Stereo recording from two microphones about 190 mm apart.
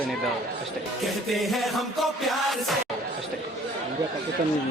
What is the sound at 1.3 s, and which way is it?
Music, centre (ahead or behind).